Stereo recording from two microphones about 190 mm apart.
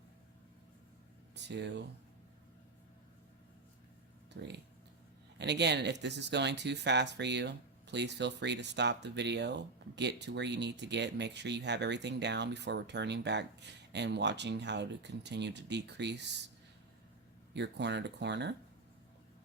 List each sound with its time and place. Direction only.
1.4 s speech: 65° right (ahead or behind)
4.4 s speech: 65° right (ahead or behind)
17.5 s speech: 65° right (ahead or behind)